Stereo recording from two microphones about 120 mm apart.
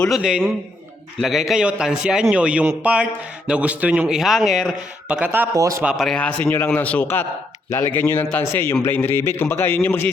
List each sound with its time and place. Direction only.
0.2 s a man's voice: 10° right (ahead or behind)
5.5 s speech: 30° right (ahead or behind)
5.8 s speech: 5° right (ahead or behind)
6.1 s a man's voice: 10° left (ahead or behind)